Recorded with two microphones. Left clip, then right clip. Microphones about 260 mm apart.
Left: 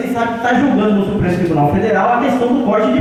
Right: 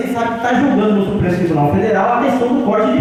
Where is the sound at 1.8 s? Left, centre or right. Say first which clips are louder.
Even; centre.